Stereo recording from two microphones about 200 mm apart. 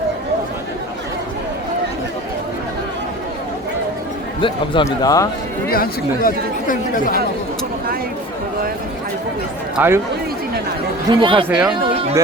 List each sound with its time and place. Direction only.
4.4 s speech: 25° left (ahead or behind)
5.6 s speech: 45° left (ahead or behind)
9.7 s speech: 10° right (ahead or behind)
11.1 s speech: 25° right (ahead or behind)
11.4 s speech: 5° right (ahead or behind)